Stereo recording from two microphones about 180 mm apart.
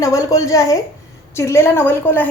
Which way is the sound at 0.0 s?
15° left (ahead or behind).